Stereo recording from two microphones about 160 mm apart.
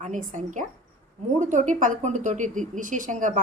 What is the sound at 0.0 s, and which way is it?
A woman's voice, 55° right (ahead or behind).